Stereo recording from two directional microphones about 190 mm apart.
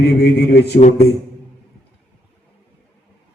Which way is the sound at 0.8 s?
35° left (ahead or behind).